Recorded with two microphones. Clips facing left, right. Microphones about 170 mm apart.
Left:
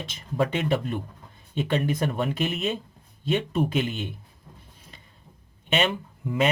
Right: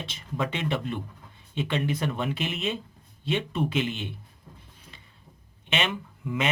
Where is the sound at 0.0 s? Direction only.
45° left (ahead or behind).